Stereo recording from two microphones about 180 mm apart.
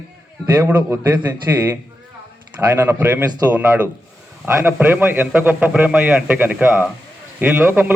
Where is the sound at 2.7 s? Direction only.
10° right (ahead or behind).